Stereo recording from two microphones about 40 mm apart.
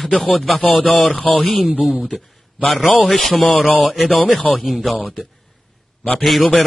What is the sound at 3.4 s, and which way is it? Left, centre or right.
Speech, left.